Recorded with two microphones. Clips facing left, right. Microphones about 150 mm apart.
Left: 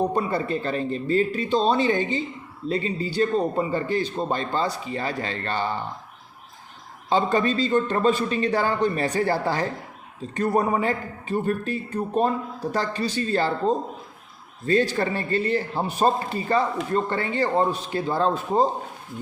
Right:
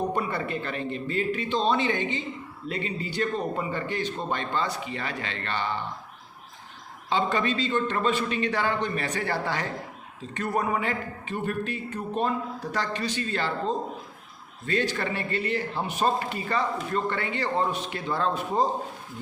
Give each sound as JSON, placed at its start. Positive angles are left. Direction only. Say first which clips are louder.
{"t": 0.1, "sound": "speech", "louder": "left 4 dB", "side_deg": 35}
{"t": 7.1, "sound": "speech", "louder": "left 4 dB", "side_deg": 40}